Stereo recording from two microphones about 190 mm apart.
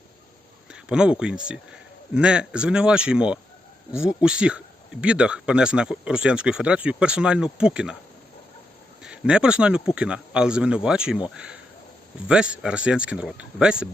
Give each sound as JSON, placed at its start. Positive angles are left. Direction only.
{"t": 0.7, "sound": "speech", "side_deg": -5}
{"t": 9.0, "sound": "speech", "side_deg": -5}